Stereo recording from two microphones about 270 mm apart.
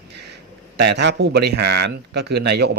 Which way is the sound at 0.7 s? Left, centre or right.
Right.